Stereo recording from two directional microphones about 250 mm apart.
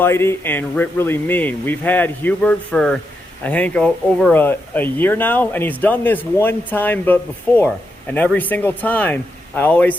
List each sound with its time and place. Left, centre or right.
0.0 s speech: centre